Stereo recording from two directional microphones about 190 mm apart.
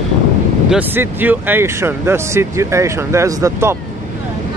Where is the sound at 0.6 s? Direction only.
10° right (ahead or behind).